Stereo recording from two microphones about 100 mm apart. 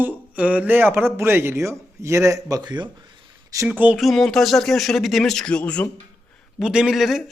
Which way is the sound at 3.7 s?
10° right (ahead or behind).